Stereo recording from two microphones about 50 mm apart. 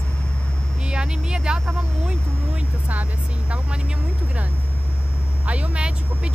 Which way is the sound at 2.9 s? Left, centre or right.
Right.